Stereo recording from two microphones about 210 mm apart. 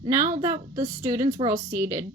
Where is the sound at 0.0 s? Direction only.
15° right (ahead or behind).